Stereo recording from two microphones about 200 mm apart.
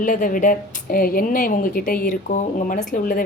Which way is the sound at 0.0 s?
40° left (ahead or behind).